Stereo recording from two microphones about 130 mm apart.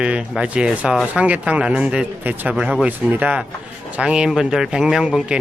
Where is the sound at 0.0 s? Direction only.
5° right (ahead or behind).